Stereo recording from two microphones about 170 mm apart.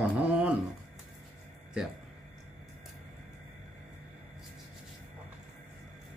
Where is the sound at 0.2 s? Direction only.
10° right (ahead or behind).